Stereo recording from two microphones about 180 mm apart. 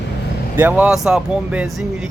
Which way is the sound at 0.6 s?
10° right (ahead or behind).